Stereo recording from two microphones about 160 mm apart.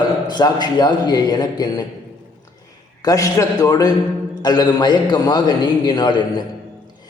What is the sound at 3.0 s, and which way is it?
A man's voice, 20° left (ahead or behind).